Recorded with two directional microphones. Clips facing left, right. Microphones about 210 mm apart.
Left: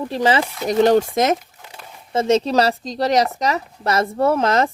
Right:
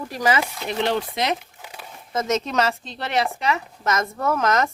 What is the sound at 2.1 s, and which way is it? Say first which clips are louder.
Speech: left 6 dB; 30° left (ahead or behind).